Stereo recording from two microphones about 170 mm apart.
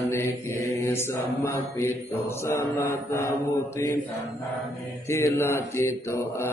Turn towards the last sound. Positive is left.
turn(degrees=15)  # may be behind; listen again after turning